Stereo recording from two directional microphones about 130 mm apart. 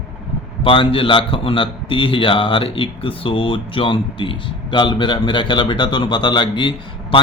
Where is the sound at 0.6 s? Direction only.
45° left (ahead or behind).